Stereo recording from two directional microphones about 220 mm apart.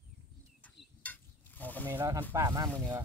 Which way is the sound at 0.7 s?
5° left (ahead or behind).